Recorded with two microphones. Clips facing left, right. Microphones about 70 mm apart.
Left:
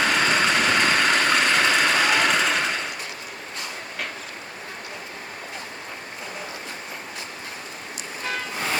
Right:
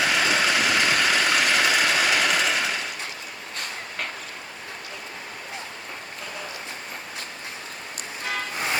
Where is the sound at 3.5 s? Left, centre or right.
Right.